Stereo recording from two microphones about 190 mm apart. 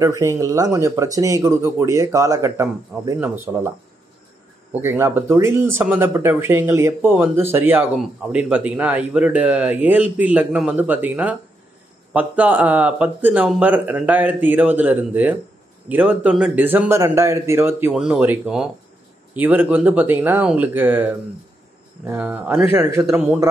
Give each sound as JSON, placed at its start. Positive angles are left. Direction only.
{"t": 0.0, "sound": "speech", "side_deg": -15}
{"t": 4.7, "sound": "speech", "side_deg": -15}